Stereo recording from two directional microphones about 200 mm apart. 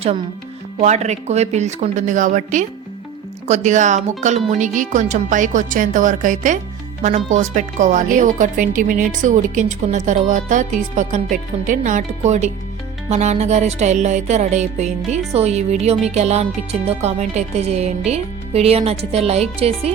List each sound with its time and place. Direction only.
0.8 s speech: 35° right (ahead or behind)